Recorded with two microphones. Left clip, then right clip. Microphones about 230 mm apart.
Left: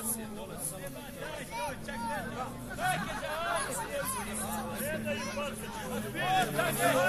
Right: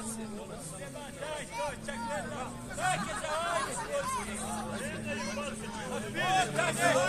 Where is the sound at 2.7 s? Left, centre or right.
Right.